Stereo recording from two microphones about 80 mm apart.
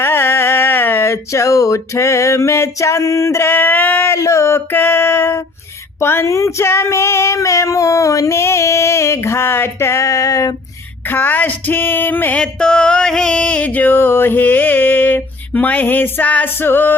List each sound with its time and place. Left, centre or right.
0.0 s a sound: left
4.2 s female singing: left
11.1 s music: left
12.4 s music: centre; by 17.0 s left